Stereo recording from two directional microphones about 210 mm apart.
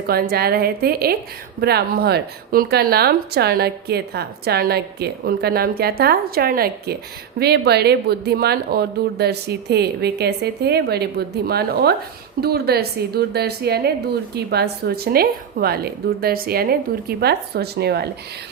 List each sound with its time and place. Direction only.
0.1 s a woman's voice: 45° right (ahead or behind)